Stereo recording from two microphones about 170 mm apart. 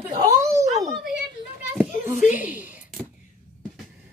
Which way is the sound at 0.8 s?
Centre (ahead or behind).